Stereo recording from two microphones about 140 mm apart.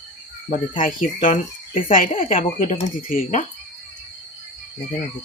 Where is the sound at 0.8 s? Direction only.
75° left (ahead or behind).